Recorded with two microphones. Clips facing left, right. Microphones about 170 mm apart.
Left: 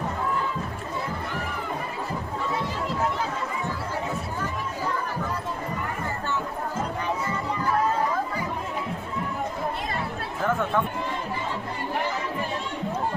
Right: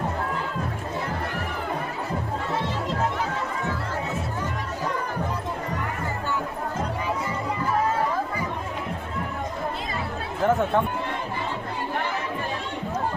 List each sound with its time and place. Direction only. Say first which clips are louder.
10.4 s chatter: right 4 dB; 35° right (ahead or behind)